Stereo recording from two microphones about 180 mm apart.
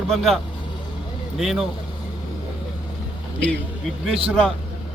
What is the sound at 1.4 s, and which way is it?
Speech, centre (ahead or behind).